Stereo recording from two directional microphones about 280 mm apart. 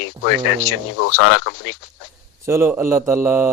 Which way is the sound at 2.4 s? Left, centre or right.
Centre.